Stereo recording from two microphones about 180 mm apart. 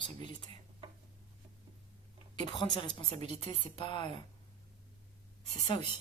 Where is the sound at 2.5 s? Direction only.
25° left (ahead or behind).